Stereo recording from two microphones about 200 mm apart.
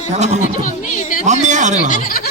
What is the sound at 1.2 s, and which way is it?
Speech, 35° right (ahead or behind).